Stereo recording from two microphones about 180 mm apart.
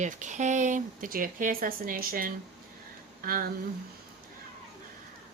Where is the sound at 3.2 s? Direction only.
50° right (ahead or behind).